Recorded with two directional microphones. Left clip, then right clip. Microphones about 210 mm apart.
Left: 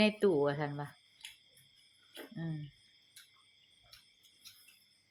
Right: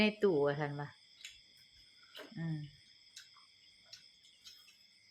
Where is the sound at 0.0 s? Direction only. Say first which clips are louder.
Left 2 dB; 10° left (ahead or behind).